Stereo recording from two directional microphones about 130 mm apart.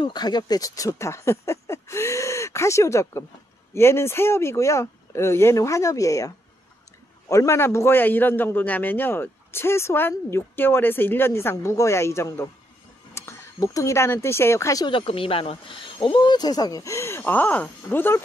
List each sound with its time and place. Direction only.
0.0 s a man's voice: 35° left (ahead or behind)
14.9 s speech: 45° left (ahead or behind); by 18.2 s 15° left (ahead or behind)